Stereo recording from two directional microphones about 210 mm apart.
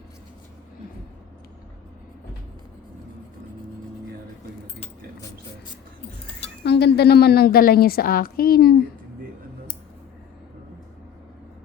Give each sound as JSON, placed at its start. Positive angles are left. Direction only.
{"t": 6.7, "sound": "a woman's voice", "side_deg": 50}